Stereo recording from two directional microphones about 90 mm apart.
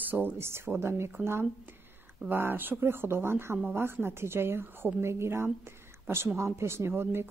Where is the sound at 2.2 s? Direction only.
25° right (ahead or behind).